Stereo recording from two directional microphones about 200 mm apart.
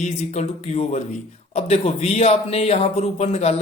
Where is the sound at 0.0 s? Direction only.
35° left (ahead or behind).